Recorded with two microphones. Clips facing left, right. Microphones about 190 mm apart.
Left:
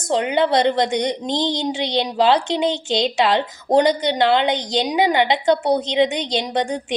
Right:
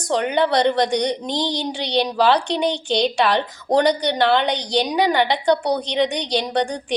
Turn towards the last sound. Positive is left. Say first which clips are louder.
# even
turn(degrees=20)  # may be behind; listen again after turning